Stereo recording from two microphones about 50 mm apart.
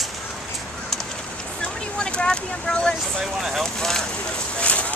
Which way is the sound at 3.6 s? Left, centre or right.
Centre.